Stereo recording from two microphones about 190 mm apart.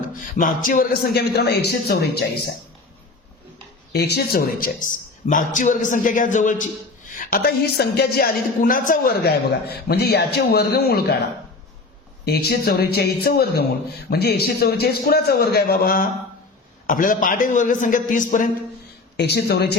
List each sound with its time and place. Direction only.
0.3 s speech: 45° left (ahead or behind)
3.9 s speech: 60° left (ahead or behind)
12.2 s speech: 55° left (ahead or behind)
19.1 s speech: 60° left (ahead or behind)